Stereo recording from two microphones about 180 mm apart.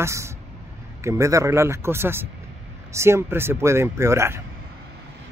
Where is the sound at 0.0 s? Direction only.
15° right (ahead or behind).